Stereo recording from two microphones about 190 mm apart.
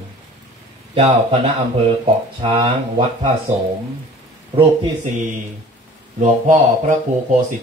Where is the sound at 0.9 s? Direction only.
30° right (ahead or behind).